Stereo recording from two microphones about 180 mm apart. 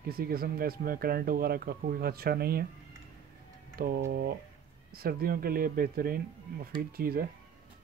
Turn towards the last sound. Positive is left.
turn(degrees=-55)  # may be behind; listen again after turning